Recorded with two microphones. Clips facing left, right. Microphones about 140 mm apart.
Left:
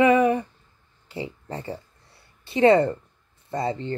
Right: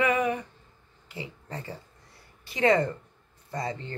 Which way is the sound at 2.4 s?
30° left (ahead or behind).